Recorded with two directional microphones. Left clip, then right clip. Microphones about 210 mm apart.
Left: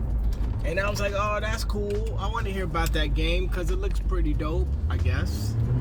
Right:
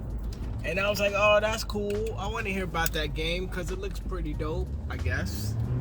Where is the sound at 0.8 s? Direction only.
25° right (ahead or behind); by 5.0 s 5° right (ahead or behind).